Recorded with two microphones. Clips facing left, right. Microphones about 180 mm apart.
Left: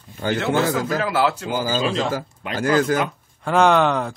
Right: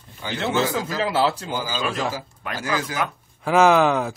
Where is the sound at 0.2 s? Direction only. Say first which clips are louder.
Left 8 dB; 50° left (ahead or behind).